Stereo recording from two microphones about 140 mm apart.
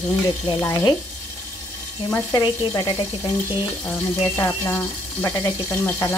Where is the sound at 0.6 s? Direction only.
25° left (ahead or behind).